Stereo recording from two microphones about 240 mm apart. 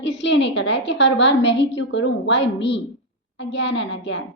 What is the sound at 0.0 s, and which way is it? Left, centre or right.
A woman's voice, left.